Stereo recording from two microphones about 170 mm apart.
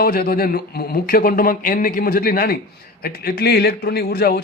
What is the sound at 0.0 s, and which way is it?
A man's voice, 60° left (ahead or behind).